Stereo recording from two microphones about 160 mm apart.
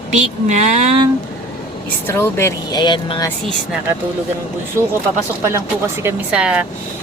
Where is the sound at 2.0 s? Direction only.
15° left (ahead or behind).